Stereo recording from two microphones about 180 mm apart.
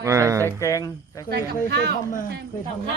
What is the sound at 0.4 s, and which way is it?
Speech, 15° left (ahead or behind).